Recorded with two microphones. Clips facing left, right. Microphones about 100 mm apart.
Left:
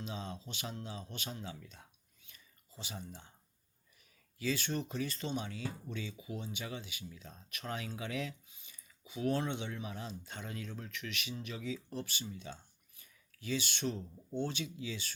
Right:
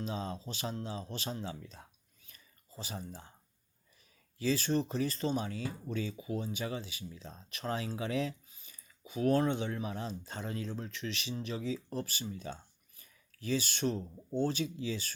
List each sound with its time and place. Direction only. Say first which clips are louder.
0.0 s speech: right 5 dB; 35° right (ahead or behind)
4.4 s speech: right 5 dB; 35° right (ahead or behind)